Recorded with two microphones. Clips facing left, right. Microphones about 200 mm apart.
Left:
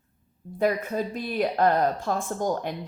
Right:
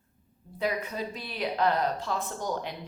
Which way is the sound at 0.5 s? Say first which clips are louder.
Left 6 dB; 50° left (ahead or behind).